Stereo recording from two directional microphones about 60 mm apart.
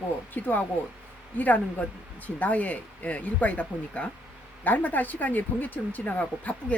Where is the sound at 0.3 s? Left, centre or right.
Left.